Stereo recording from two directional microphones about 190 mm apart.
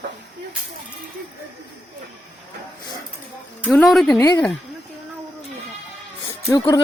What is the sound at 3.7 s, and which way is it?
Speech, centre (ahead or behind).